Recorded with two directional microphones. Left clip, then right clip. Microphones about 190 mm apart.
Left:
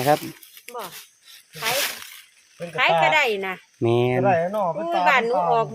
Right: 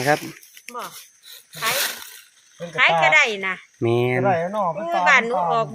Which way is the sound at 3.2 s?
55° left (ahead or behind).